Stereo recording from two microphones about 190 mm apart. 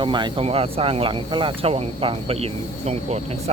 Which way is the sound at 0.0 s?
25° right (ahead or behind).